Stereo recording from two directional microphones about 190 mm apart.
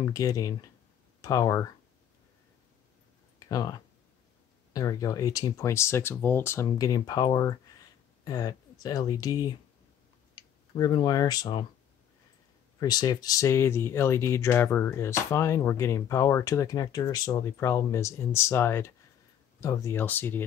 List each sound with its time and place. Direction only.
0.0 s speech: 20° left (ahead or behind)
3.3 s a sound: 20° left (ahead or behind)
4.7 s speech: 20° left (ahead or behind)
12.7 s speech: 20° left (ahead or behind)